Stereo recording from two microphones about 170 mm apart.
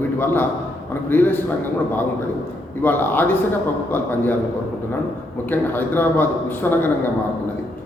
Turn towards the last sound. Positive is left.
turn(degrees=10)  # may be behind; listen again after turning